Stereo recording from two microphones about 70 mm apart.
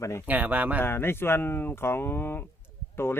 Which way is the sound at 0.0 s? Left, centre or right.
Left.